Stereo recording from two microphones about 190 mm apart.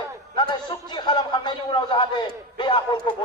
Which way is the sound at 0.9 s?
25° left (ahead or behind).